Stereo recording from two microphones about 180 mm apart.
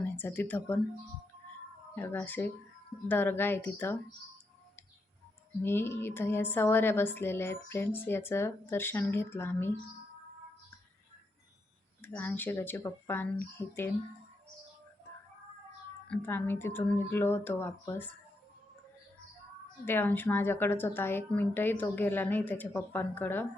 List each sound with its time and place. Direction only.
0.0 s speech: 10° left (ahead or behind)
2.0 s a woman's voice: 10° left (ahead or behind)
5.6 s a woman's voice: 15° left (ahead or behind)
12.0 s a woman's voice: 10° left (ahead or behind)
16.0 s a woman's voice: 10° left (ahead or behind)
19.8 s a woman's voice: 10° left (ahead or behind)